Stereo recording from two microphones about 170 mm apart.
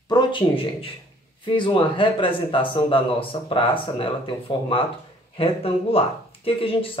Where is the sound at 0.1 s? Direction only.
30° left (ahead or behind).